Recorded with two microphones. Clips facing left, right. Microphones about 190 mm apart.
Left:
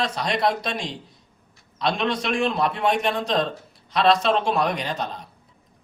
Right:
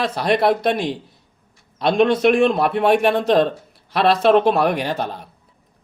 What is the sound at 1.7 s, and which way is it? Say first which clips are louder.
A man's voice: right 8 dB; 50° right (ahead or behind).